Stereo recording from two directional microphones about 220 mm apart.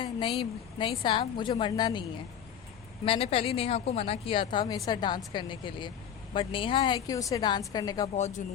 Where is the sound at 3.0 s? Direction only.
25° left (ahead or behind).